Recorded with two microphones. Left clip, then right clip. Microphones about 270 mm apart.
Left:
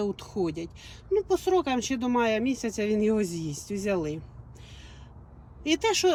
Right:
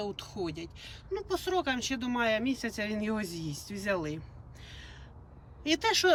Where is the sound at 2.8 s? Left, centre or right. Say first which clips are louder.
Left 13 dB; centre.